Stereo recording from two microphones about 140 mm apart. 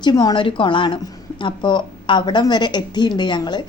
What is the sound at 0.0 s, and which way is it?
A woman's voice, 30° left (ahead or behind).